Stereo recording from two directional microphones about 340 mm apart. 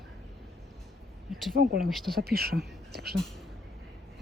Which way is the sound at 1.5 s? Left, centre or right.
Right.